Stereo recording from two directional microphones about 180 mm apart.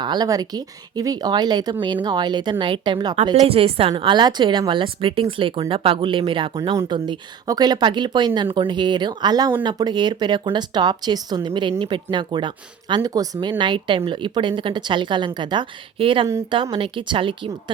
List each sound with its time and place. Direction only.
0.0 s speech: 25° right (ahead or behind)